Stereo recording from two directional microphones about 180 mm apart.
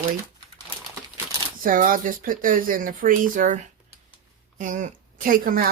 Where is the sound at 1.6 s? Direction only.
50° right (ahead or behind).